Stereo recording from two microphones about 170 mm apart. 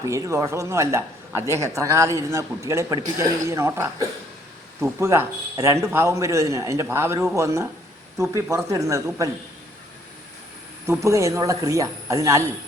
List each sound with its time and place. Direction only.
0.0 s speech: 20° right (ahead or behind)
10.8 s speech: 15° right (ahead or behind)